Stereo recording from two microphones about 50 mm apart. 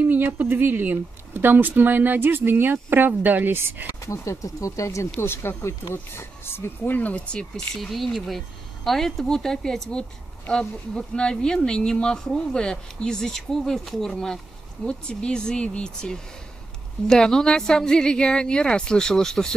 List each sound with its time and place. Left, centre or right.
0.1 s a woman's voice: right
4.0 s speech: left
5.2 s speech: left
6.9 s speech: left
7.3 s speech: centre
11.0 s speech: centre